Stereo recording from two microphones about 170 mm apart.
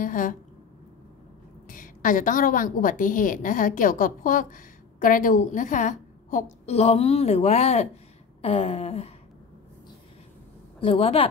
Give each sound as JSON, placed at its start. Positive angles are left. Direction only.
{"t": 0.0, "sound": "a woman's voice", "side_deg": 50}
{"t": 1.7, "sound": "a woman's voice", "side_deg": 50}
{"t": 10.8, "sound": "a woman's voice", "side_deg": 35}